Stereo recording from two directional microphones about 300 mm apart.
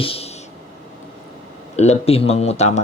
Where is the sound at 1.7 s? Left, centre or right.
Left.